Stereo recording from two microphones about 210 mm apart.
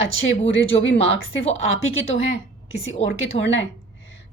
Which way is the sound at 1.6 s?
75° left (ahead or behind).